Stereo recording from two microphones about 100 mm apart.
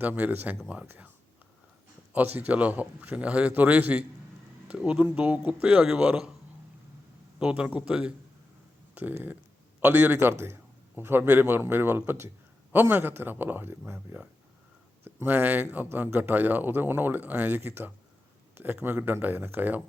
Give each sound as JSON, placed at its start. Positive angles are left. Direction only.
{"t": 0.0, "sound": "speech", "side_deg": -15}
{"t": 2.1, "sound": "speech", "side_deg": -15}
{"t": 7.3, "sound": "a man's voice", "side_deg": -10}